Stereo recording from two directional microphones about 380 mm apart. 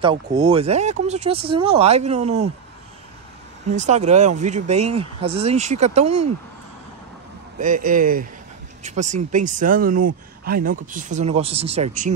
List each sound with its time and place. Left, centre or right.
0.0 s speech: centre
3.7 s speech: centre
7.5 s speech: right